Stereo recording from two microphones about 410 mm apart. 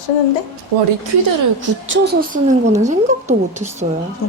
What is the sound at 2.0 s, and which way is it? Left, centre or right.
A woman's voice, right.